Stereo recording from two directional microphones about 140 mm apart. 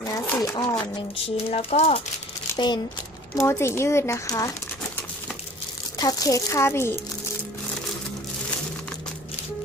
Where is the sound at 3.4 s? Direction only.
20° left (ahead or behind).